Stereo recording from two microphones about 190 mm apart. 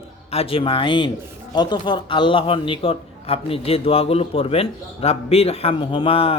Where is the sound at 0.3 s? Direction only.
30° left (ahead or behind).